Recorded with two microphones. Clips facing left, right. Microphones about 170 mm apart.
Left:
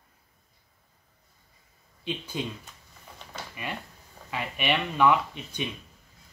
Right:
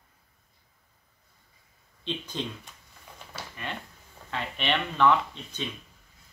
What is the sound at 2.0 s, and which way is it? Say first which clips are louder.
Speech: left 1 dB; 10° left (ahead or behind).